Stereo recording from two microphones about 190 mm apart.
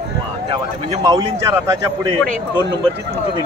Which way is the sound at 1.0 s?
15° right (ahead or behind).